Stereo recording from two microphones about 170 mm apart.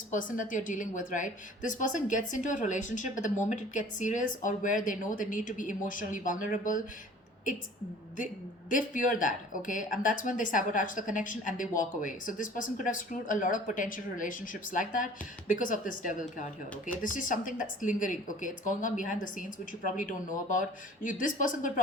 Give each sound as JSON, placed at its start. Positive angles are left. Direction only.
{"t": 0.1, "sound": "speech", "side_deg": 50}
{"t": 8.7, "sound": "speech", "side_deg": 50}